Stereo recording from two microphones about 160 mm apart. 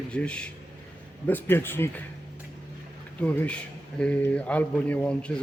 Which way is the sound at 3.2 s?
10° left (ahead or behind).